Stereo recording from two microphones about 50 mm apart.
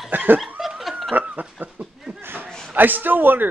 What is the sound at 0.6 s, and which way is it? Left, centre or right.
Dog, centre.